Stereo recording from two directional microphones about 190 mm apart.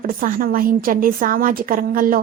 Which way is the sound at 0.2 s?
50° right (ahead or behind).